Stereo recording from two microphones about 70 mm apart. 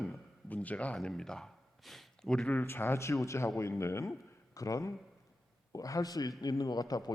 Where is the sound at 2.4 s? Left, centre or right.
Left.